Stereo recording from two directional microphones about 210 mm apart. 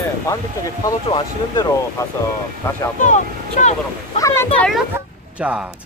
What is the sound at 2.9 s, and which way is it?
Speech, 35° left (ahead or behind).